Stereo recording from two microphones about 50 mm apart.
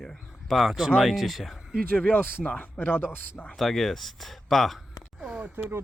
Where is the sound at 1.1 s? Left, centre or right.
Centre.